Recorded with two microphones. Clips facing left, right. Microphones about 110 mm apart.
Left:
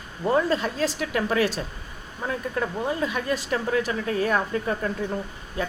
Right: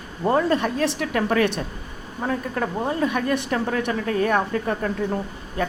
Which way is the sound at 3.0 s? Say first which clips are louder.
Right 4 dB; 50° right (ahead or behind).